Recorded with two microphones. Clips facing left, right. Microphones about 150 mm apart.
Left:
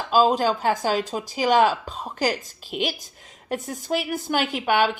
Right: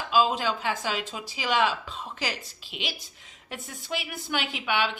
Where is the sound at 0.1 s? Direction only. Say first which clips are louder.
Left 5 dB; 40° left (ahead or behind).